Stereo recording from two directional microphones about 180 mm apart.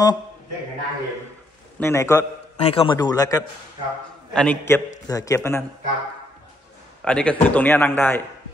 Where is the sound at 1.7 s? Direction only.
15° left (ahead or behind).